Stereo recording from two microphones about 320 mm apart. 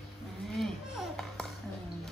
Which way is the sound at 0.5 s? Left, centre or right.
Centre.